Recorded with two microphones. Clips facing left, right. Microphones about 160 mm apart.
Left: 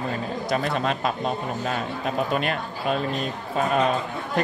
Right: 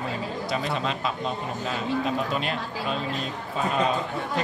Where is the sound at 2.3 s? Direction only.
55° left (ahead or behind).